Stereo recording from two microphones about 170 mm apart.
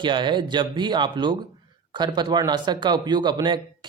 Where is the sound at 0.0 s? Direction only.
30° right (ahead or behind).